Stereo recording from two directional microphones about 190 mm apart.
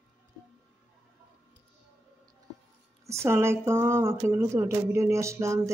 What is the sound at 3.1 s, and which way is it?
Speech, 15° right (ahead or behind).